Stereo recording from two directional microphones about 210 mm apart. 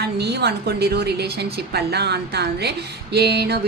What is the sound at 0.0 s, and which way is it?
A woman's voice, 50° right (ahead or behind).